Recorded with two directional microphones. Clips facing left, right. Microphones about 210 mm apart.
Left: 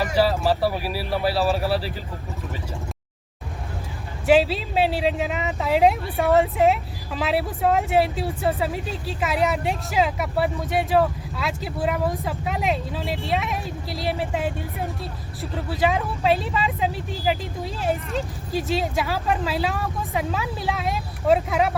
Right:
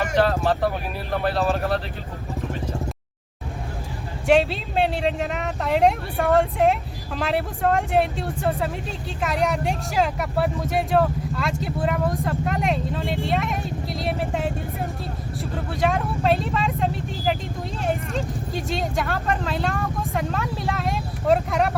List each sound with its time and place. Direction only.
0.0 s speech: 5° left (ahead or behind)
4.3 s speech: centre (ahead or behind)